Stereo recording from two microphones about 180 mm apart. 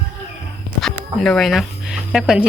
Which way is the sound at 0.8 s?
Centre (ahead or behind).